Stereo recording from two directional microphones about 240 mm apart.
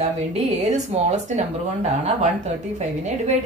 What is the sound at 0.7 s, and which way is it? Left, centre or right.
Speech, right.